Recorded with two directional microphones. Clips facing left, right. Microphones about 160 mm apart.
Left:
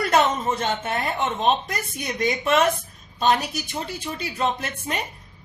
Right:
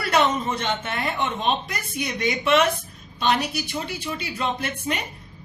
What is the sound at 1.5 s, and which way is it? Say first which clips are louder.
Speech: left 3 dB; 40° left (ahead or behind).